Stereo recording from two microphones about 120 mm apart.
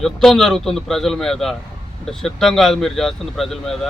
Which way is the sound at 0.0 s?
5° left (ahead or behind).